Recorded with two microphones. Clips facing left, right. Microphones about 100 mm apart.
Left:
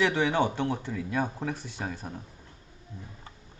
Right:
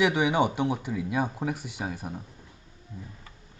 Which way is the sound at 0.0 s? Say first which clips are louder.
Right 2 dB; 15° right (ahead or behind).